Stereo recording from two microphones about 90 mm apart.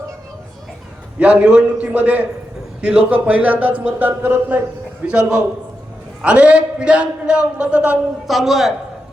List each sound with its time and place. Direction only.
1.2 s speech: 15° right (ahead or behind)
5.0 s a man's voice: 10° right (ahead or behind)